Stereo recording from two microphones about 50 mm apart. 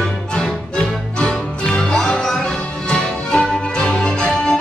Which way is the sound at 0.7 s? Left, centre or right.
Centre.